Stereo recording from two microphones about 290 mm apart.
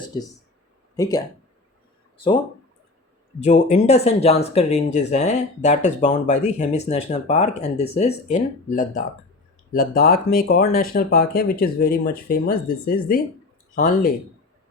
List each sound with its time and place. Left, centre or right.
0.9 s speech: centre
3.4 s speech: left